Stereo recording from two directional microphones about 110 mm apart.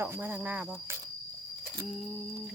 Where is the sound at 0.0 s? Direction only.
20° right (ahead or behind).